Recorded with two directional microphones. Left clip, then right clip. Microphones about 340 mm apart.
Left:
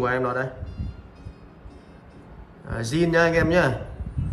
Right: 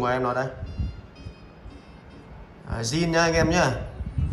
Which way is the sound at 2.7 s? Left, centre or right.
Centre.